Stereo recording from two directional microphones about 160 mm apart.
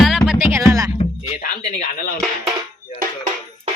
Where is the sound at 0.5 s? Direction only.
20° right (ahead or behind).